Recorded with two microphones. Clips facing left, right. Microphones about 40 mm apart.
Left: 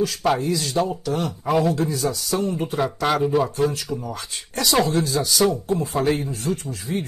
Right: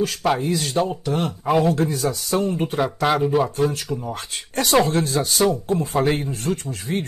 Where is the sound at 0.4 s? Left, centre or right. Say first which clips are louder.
Right 1 dB; right.